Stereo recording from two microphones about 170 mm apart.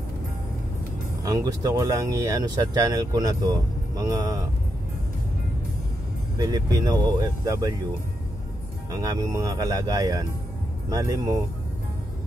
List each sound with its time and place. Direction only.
1.2 s speech: 20° right (ahead or behind)
6.3 s speech: 20° right (ahead or behind)
8.9 s speech: 20° right (ahead or behind)